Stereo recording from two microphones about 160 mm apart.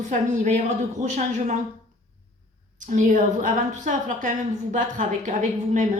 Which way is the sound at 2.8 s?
50° right (ahead or behind).